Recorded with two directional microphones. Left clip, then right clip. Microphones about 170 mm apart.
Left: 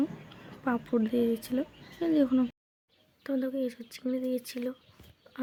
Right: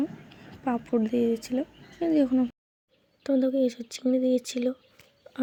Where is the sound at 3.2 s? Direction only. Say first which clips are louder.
Right 7 dB; 20° right (ahead or behind).